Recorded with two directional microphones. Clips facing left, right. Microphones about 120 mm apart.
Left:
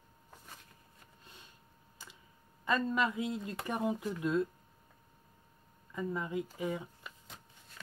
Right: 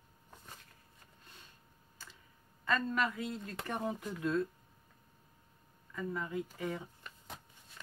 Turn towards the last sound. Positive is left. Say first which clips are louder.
# left 2 dB
turn(degrees=10)  # may be behind; listen again after turning